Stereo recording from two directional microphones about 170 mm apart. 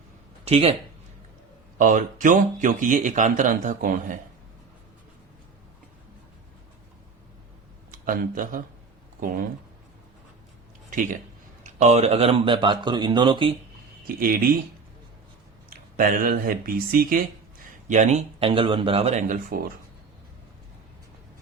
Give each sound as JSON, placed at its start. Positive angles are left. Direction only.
{"t": 0.4, "sound": "speech", "side_deg": -35}
{"t": 1.8, "sound": "speech", "side_deg": -50}
{"t": 7.9, "sound": "speech", "side_deg": -50}
{"t": 11.6, "sound": "speech", "side_deg": -45}
{"t": 14.2, "sound": "speech", "side_deg": -60}
{"t": 16.0, "sound": "speech", "side_deg": -55}
{"t": 17.8, "sound": "speech", "side_deg": -45}